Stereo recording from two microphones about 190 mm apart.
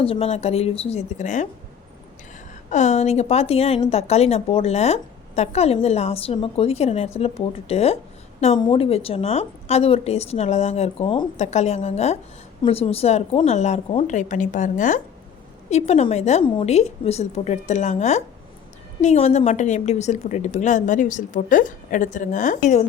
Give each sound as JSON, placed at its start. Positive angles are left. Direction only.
{"t": 0.0, "sound": "a woman's voice", "side_deg": 30}
{"t": 2.6, "sound": "a woman's voice", "side_deg": 40}